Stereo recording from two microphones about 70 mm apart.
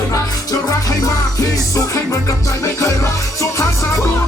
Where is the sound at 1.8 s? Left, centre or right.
Left.